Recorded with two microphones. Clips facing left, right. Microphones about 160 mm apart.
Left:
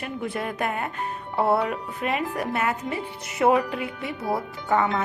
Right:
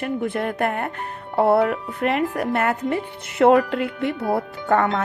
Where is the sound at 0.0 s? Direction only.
55° right (ahead or behind).